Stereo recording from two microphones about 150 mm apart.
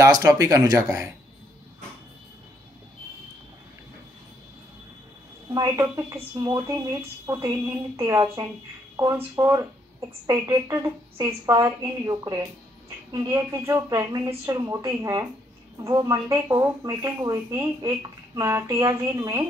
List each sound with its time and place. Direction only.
0.0 s speech: 20° right (ahead or behind)
5.5 s speech: 25° right (ahead or behind)